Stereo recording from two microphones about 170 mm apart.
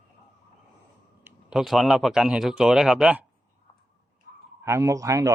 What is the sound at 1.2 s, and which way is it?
Speech, centre (ahead or behind).